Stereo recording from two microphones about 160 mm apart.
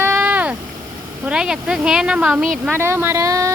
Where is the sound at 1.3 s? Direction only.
5° right (ahead or behind).